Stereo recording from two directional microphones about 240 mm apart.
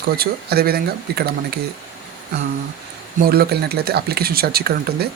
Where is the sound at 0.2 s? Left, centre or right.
Right.